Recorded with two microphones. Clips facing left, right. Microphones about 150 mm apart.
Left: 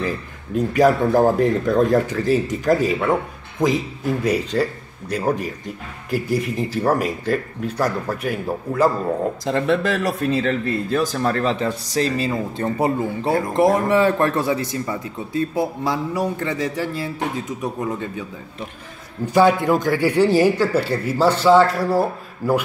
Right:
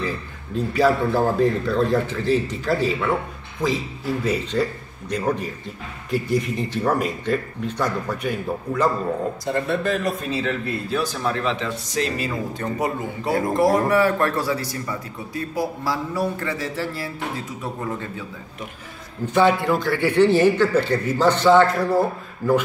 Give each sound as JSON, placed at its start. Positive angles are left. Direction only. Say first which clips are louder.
{"t": 0.6, "sound": "a man's voice", "louder": "left 3 dB", "side_deg": 15}
{"t": 9.4, "sound": "speech", "louder": "left 3 dB", "side_deg": 90}
{"t": 10.3, "sound": "a man's voice", "louder": "left 4 dB", "side_deg": 50}
{"t": 19.2, "sound": "a man's voice", "louder": "left 2 dB", "side_deg": 10}